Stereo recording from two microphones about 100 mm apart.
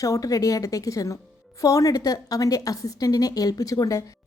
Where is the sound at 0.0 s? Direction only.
35° left (ahead or behind).